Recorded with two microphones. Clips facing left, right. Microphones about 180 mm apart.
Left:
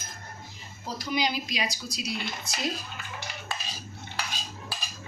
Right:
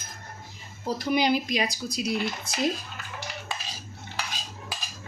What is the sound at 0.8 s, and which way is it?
A woman's voice, 55° right (ahead or behind).